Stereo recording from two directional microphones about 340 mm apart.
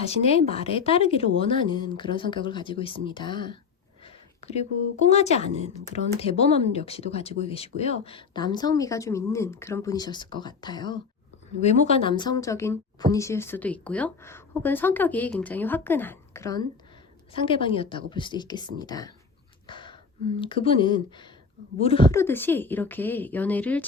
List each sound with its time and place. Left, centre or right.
0.0 s a woman's voice: centre
19.6 s a sound: centre
20.4 s a woman's voice: centre